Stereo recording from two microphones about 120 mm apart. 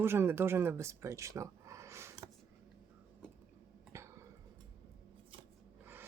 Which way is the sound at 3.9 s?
25° right (ahead or behind).